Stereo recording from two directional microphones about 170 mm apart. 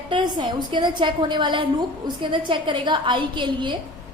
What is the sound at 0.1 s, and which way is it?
A woman's voice, 25° right (ahead or behind).